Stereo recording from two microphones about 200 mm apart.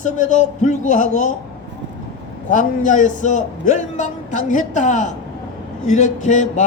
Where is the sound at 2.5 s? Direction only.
40° left (ahead or behind).